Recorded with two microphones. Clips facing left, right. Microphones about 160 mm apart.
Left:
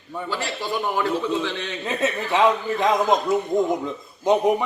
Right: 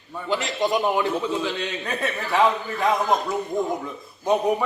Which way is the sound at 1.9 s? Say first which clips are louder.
Left 4 dB; 20° left (ahead or behind).